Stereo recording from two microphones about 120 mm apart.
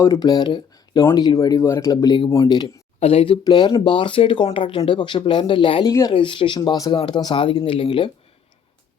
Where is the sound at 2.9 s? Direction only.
55° left (ahead or behind).